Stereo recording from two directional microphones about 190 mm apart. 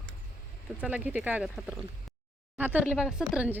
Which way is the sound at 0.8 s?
5° right (ahead or behind).